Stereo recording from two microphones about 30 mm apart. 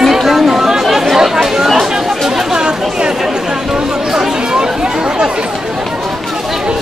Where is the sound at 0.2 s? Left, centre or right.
Centre.